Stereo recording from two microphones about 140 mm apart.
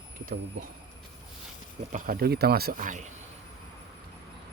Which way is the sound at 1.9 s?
75° right (ahead or behind).